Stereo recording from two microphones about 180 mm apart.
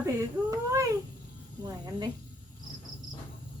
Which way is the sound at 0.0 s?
15° right (ahead or behind).